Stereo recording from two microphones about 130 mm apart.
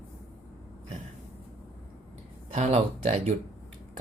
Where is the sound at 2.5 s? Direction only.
50° right (ahead or behind).